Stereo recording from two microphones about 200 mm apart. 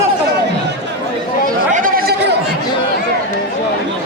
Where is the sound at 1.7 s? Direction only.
40° right (ahead or behind).